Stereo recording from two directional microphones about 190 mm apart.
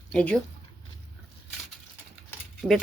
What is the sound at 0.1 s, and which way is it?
Speech, 5° left (ahead or behind).